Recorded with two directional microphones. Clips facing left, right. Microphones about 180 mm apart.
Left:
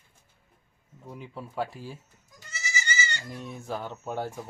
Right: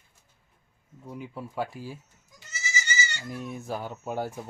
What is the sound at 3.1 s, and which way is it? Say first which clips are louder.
Speech: right 2 dB; 10° right (ahead or behind).